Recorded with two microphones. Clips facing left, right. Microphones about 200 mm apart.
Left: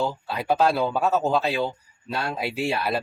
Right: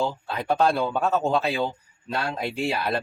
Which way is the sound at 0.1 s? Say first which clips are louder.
Left 1 dB; 5° left (ahead or behind).